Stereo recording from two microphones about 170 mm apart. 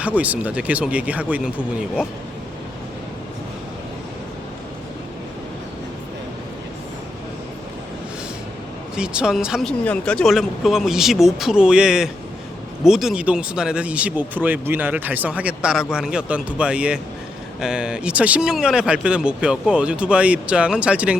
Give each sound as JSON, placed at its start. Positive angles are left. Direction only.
{"t": 0.0, "sound": "speech", "side_deg": -10}
{"t": 9.0, "sound": "speech", "side_deg": -5}